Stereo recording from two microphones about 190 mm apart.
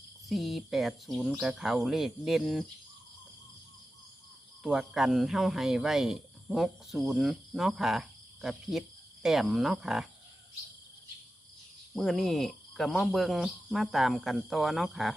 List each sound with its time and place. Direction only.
0.3 s speech: centre (ahead or behind)
4.6 s speech: 5° right (ahead or behind)
11.9 s speech: centre (ahead or behind)